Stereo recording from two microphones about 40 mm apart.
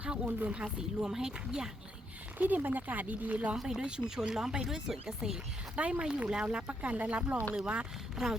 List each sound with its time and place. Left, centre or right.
0.3 s speech: right
0.8 s speech: centre
2.4 s speech: right
3.7 s speech: right
5.7 s speech: right
6.4 s speech: right
8.1 s speech: centre